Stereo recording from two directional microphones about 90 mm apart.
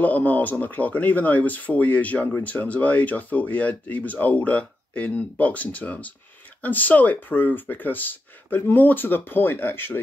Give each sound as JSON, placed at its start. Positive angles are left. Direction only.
{"t": 0.0, "sound": "speech", "side_deg": 20}